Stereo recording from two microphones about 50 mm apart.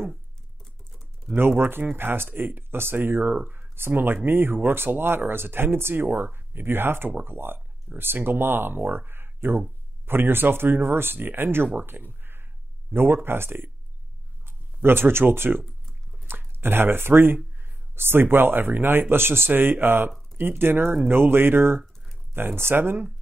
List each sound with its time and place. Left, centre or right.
0.6 s typing: centre
1.6 s speech: right
3.3 s speech: right
3.7 s speech: right
6.0 s speech: right
7.1 s speech: right
7.3 s speech: right
12.2 s a sound: right
12.9 s speech: right